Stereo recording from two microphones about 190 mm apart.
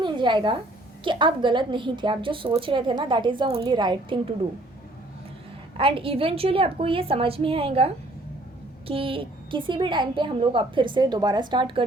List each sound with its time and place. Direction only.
0.0 s a sound: 25° right (ahead or behind)
1.0 s a woman's voice: 25° right (ahead or behind)
5.7 s a woman's voice: 30° right (ahead or behind)